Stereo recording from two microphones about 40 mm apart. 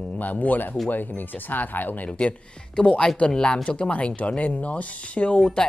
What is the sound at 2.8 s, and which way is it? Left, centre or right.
Speech, left.